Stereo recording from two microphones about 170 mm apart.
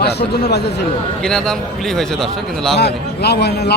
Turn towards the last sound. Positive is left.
turn(degrees=75)  # may be behind; listen again after turning